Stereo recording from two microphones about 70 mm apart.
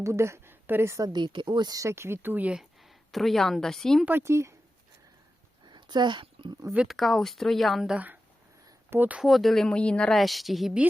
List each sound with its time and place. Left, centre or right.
0.0 s a woman's voice: right
1.0 s speech: right
1.8 s speech: right
2.5 s a woman's voice: centre
4.2 s speech: right
5.6 s a sound: right
6.8 s speech: centre
7.9 s speech: right
9.2 s speech: centre
10.2 s speech: centre